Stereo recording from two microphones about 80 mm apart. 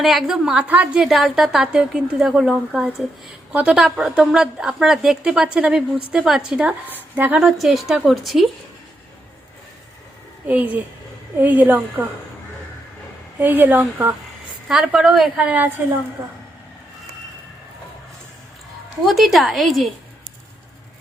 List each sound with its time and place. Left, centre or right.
0.0 s a woman's voice: centre
1.0 s a woman's voice: centre
6.9 s a woman's voice: centre
7.3 s a woman's voice: centre
10.4 s speech: right
13.4 s speech: right
14.7 s a woman's voice: centre
15.4 s speech: centre
19.0 s a woman's voice: centre